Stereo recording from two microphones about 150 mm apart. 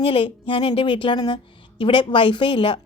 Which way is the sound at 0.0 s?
35° left (ahead or behind).